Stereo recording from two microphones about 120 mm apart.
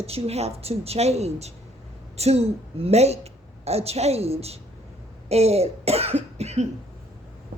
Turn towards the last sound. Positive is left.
turn(degrees=-65)  # may be behind; listen again after turning